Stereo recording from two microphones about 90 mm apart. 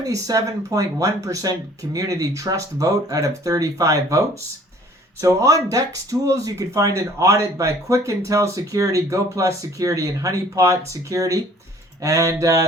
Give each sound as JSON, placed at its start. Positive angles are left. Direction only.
{"t": 0.0, "sound": "speech", "side_deg": -40}
{"t": 5.2, "sound": "speech", "side_deg": -40}